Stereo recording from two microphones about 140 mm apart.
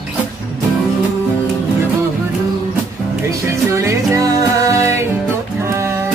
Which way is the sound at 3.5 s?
20° right (ahead or behind).